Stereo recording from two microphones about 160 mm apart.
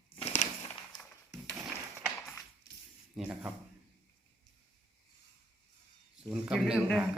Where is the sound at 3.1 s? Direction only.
10° right (ahead or behind).